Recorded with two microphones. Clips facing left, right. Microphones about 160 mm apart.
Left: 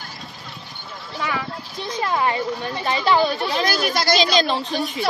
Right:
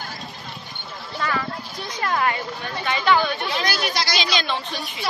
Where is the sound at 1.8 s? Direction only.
25° left (ahead or behind).